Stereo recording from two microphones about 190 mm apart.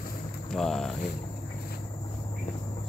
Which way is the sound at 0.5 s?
Centre (ahead or behind).